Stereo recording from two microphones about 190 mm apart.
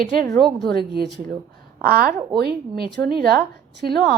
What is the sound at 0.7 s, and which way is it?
A woman's voice, 55° right (ahead or behind).